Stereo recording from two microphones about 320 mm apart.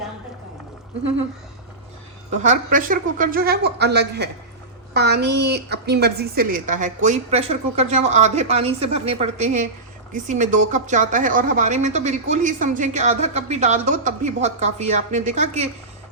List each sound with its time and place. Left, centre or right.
2.3 s speech: right